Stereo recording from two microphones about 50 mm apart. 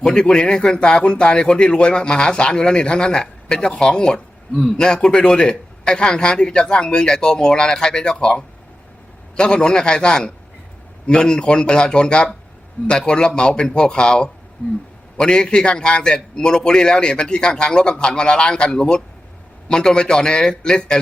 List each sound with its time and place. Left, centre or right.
0.0 s speech: centre